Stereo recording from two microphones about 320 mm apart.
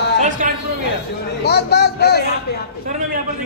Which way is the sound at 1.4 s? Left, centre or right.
Left.